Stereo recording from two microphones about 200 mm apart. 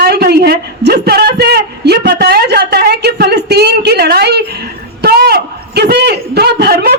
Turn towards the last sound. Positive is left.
turn(degrees=-50)  # may be behind; listen again after turning